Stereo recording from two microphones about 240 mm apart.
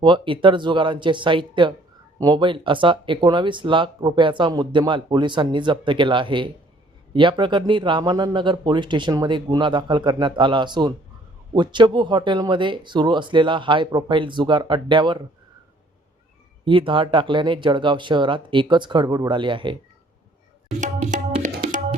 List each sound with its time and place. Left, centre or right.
0.0 s speech: right
16.6 s speech: right
20.8 s tabla: right